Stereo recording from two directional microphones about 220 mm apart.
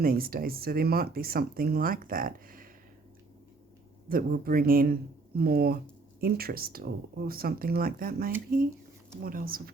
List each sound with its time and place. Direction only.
0.0 s speech: 40° right (ahead or behind)
4.1 s speech: 40° right (ahead or behind)